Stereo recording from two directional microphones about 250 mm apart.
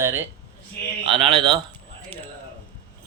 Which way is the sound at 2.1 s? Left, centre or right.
Centre.